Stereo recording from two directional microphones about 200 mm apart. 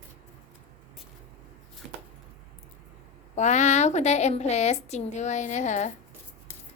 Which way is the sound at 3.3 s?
35° left (ahead or behind).